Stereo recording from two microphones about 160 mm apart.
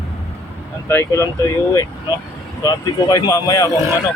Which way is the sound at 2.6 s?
25° left (ahead or behind).